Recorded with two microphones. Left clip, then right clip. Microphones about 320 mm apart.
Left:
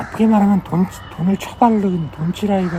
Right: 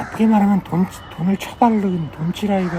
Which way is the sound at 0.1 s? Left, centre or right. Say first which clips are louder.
Left 2 dB; centre.